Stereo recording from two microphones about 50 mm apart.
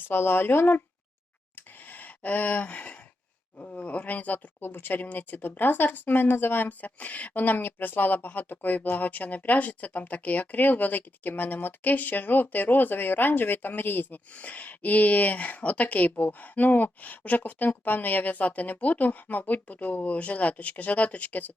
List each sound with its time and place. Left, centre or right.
0.1 s speech: left
1.5 s a sound: left
3.6 s speech: left
4.6 s speech: left
6.7 s speech: left
14.3 s speech: left